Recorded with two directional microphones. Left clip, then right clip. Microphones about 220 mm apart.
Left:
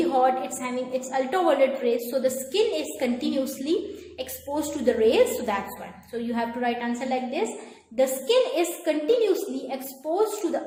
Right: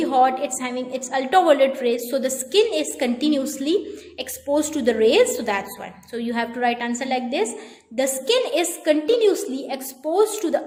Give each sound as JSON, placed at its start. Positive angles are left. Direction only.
{"t": 0.1, "sound": "a woman's voice", "side_deg": -45}